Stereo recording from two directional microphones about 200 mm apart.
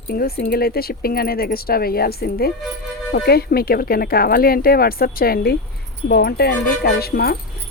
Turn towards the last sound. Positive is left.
turn(degrees=50)  # may be behind; listen again after turning